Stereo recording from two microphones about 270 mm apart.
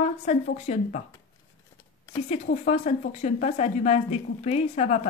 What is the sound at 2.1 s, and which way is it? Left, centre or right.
Speech, left.